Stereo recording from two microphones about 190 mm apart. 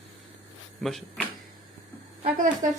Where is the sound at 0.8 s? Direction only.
Centre (ahead or behind).